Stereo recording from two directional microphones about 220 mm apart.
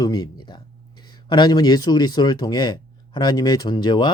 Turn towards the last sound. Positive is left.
turn(degrees=20)  # may be behind; listen again after turning